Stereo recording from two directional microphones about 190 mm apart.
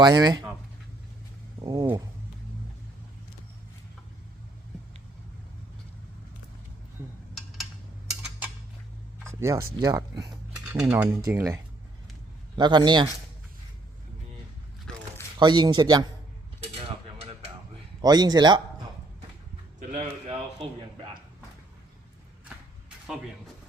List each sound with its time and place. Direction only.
0.0 s speech: 20° right (ahead or behind)
1.6 s a sound: 20° right (ahead or behind)
9.3 s speech: 15° right (ahead or behind)
15.4 s speech: 20° right (ahead or behind)
18.0 s speech: 20° right (ahead or behind)
19.9 s a man's voice: 30° right (ahead or behind)